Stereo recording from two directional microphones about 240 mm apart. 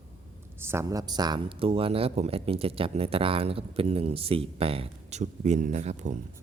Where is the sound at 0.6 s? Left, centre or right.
Centre; by 6.1 s right.